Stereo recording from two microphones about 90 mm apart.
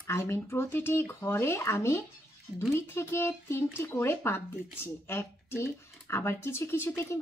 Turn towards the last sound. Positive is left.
turn(degrees=30)  # may be behind; listen again after turning